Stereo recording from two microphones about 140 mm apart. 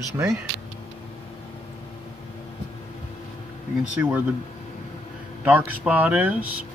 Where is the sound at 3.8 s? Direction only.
10° right (ahead or behind).